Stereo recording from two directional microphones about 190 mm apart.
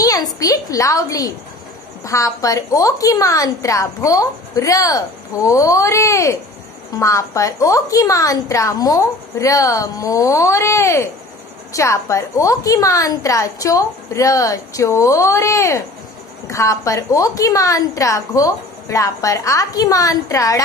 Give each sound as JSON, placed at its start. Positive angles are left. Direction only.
{"t": 0.0, "sound": "a child's voice", "side_deg": 20}